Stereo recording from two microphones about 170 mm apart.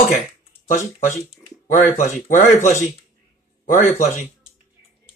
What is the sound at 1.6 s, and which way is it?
Speech, 50° left (ahead or behind).